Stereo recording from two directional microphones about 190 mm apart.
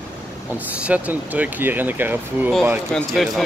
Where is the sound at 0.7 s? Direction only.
5° right (ahead or behind).